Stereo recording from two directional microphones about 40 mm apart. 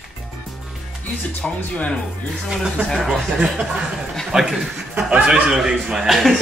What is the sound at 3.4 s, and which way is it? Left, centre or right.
Speech, centre.